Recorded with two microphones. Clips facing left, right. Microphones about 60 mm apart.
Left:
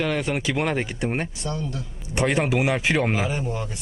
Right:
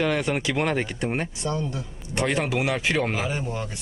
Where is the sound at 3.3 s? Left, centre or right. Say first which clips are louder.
Left 1 dB; centre.